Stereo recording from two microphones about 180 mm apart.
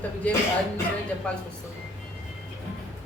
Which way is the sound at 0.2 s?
10° left (ahead or behind).